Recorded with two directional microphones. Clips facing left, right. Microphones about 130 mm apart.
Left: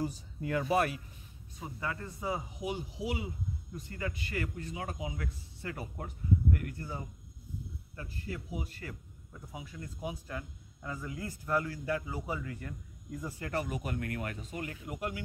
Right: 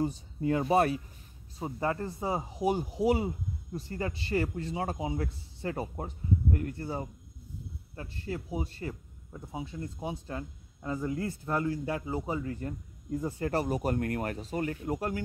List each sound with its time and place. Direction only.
0.0 s a man's voice: 25° right (ahead or behind); by 3.3 s 45° right (ahead or behind)
3.7 s a man's voice: 35° right (ahead or behind)